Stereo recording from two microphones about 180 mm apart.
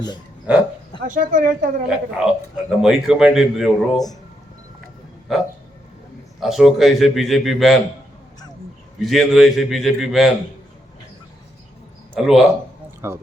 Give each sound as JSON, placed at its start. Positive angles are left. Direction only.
{"t": 0.5, "sound": "speech", "side_deg": -5}
{"t": 1.0, "sound": "speech", "side_deg": -45}
{"t": 2.0, "sound": "a man's voice", "side_deg": 0}
{"t": 5.3, "sound": "a man's voice", "side_deg": 0}
{"t": 9.0, "sound": "a man's voice", "side_deg": 0}
{"t": 12.1, "sound": "a man's voice", "side_deg": 0}
{"t": 13.0, "sound": "speech", "side_deg": -15}